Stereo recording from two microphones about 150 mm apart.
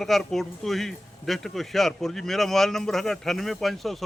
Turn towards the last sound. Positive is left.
turn(degrees=0)  # may be behind; listen again after turning